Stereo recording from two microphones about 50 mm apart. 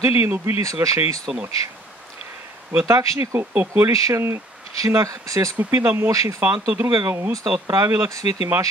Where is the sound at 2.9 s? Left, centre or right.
Right.